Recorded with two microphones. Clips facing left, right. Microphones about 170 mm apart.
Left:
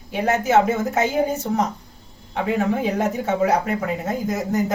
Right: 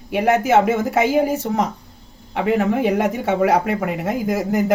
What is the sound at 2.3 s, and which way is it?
Speech, 70° right (ahead or behind).